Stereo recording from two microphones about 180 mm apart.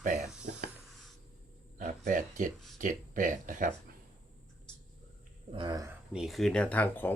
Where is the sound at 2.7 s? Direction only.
45° right (ahead or behind).